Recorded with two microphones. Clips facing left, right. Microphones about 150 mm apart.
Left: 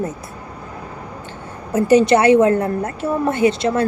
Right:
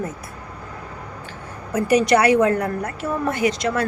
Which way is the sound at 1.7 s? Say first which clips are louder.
Left 4 dB; 25° left (ahead or behind).